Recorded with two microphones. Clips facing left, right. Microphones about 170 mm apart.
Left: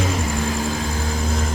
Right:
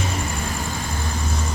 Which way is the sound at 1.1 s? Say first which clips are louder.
Left 4 dB; 90° left.